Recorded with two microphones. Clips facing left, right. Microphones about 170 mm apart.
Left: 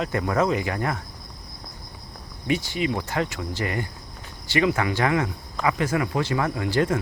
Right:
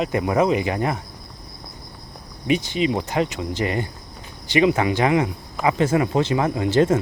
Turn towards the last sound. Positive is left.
turn(degrees=-20)  # may be behind; listen again after turning